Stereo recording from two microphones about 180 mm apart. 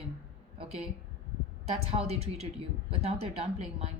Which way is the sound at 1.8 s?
35° right (ahead or behind).